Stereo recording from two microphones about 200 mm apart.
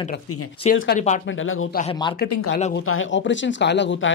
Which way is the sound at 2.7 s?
80° left.